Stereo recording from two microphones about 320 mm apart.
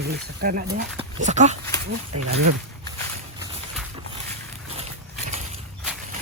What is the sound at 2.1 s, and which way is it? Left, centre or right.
Speech, right.